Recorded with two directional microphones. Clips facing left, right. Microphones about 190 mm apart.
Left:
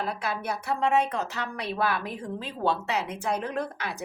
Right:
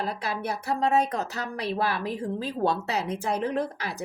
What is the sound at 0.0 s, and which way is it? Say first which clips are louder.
Speech: right 1 dB; 35° right (ahead or behind).